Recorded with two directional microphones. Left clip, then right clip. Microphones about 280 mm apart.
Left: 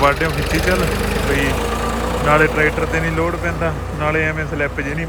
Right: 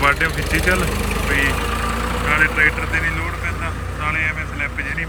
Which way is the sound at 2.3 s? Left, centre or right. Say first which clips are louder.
Left 1 dB; centre.